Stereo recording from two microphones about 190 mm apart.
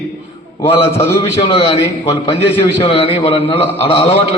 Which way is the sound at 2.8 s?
25° left (ahead or behind).